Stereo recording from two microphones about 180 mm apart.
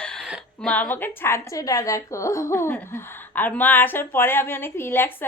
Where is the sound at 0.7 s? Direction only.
10° left (ahead or behind).